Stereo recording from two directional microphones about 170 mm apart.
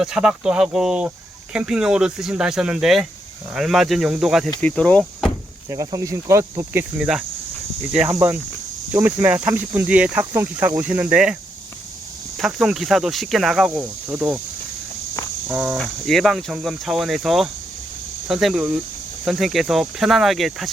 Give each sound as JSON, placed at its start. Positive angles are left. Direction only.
{"t": 0.0, "sound": "speech", "side_deg": -5}
{"t": 5.6, "sound": "speech", "side_deg": -20}
{"t": 12.4, "sound": "speech", "side_deg": -5}
{"t": 15.4, "sound": "speech", "side_deg": -10}
{"t": 15.8, "sound": "speech", "side_deg": 0}